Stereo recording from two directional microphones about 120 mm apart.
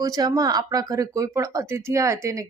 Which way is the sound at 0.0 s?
30° right (ahead or behind).